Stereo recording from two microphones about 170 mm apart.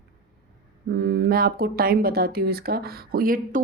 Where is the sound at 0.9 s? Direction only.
60° right (ahead or behind).